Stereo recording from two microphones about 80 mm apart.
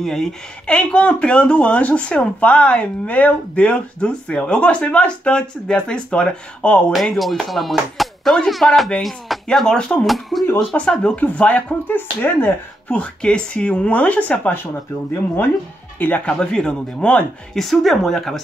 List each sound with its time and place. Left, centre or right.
0.0 s speech: centre
0.7 s speech: centre
7.1 s speech: centre; by 14.7 s left
16.0 s speech: left
16.3 s speech: centre